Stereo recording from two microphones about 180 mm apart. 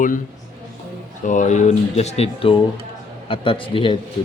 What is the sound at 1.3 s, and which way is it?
A man's voice, 40° left (ahead or behind).